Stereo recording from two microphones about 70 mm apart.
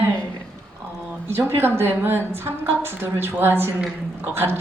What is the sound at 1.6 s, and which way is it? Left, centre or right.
A woman's voice, right.